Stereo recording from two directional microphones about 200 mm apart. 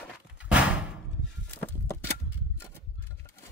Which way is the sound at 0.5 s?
5° right (ahead or behind).